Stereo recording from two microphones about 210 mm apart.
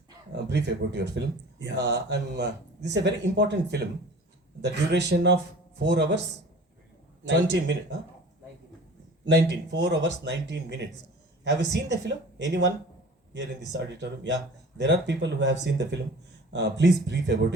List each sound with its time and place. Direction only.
0.4 s speech: 55° right (ahead or behind)
7.3 s speech: 55° right (ahead or behind)
9.3 s speech: 55° right (ahead or behind)
11.7 s speech: 55° right (ahead or behind)